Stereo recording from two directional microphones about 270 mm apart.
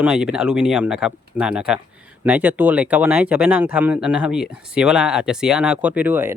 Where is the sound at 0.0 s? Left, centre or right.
Centre.